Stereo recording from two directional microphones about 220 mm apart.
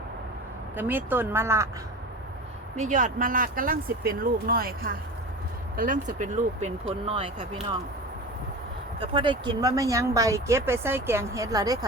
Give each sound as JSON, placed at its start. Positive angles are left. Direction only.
{"t": 0.8, "sound": "speech", "side_deg": -10}
{"t": 2.7, "sound": "speech", "side_deg": -35}
{"t": 9.0, "sound": "speech", "side_deg": -20}